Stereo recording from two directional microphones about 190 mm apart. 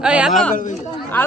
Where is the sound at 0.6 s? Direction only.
40° left (ahead or behind).